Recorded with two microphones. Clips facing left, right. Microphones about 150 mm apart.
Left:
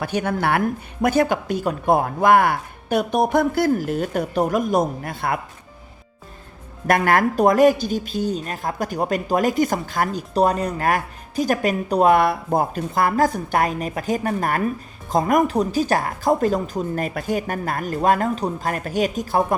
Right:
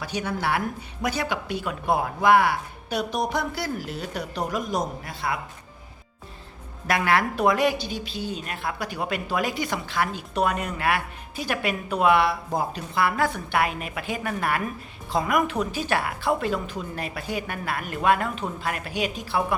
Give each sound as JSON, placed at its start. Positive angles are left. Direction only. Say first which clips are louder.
{"t": 0.0, "sound": "speech", "louder": "left 6 dB", "side_deg": 55}
{"t": 6.8, "sound": "speech", "louder": "left 5 dB", "side_deg": 50}